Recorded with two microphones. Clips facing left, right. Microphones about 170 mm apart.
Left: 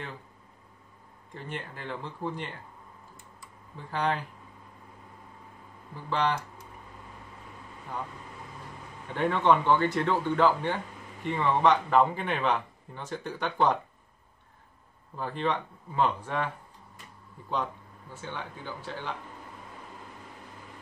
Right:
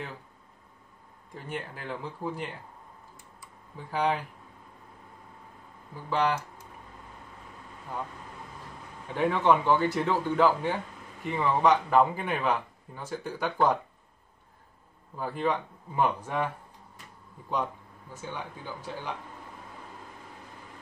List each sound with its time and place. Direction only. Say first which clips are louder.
1.3 s speech: right 2 dB; 5° right (ahead or behind)
3.7 s speech: right 2 dB; 10° right (ahead or behind)
6.0 s speech: right 1 dB; 10° right (ahead or behind)
9.1 s speech: even; 5° right (ahead or behind)
15.1 s speech: right 1 dB; 10° right (ahead or behind)
18.1 s speech: right 1 dB; 10° right (ahead or behind)